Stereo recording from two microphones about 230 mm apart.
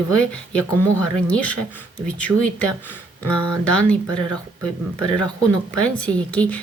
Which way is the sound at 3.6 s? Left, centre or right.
Centre.